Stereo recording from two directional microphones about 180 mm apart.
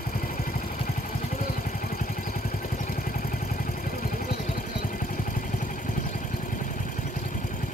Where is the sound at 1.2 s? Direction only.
45° left (ahead or behind).